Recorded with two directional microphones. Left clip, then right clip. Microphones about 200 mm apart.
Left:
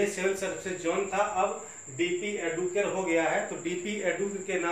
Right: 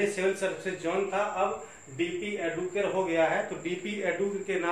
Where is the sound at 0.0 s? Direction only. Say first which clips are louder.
Right 1 dB; 25° right (ahead or behind).